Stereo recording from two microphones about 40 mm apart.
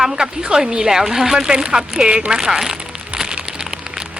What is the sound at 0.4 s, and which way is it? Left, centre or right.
Speech, right.